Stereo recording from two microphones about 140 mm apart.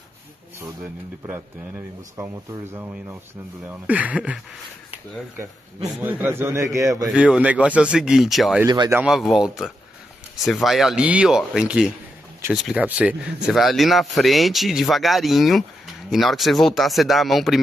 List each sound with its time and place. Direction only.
2.1 s a man's voice: 20° right (ahead or behind)
6.0 s a man's voice: 15° right (ahead or behind)
7.1 s a man's voice: 5° right (ahead or behind)
8.6 s speech: 30° right (ahead or behind)
9.0 s a man's voice: centre (ahead or behind)